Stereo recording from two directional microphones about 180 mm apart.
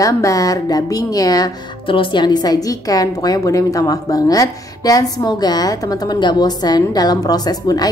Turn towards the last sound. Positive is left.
turn(degrees=20)  # may be behind; listen again after turning